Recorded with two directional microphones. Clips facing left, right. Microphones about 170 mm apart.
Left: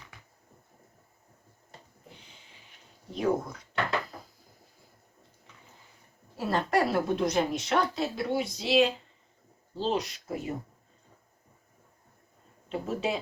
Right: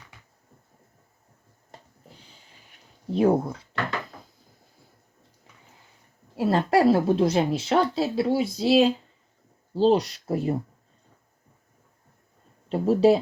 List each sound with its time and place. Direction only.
3.1 s a woman's voice: 30° right (ahead or behind)
6.5 s a woman's voice: 30° right (ahead or behind)
12.6 s speech: 35° right (ahead or behind)